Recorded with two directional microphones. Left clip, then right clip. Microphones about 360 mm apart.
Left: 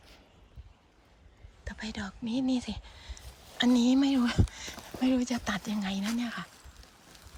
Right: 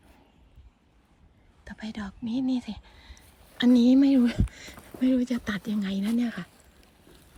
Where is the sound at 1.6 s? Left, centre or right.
Centre.